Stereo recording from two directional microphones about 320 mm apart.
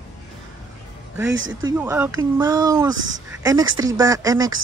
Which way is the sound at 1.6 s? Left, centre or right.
Centre.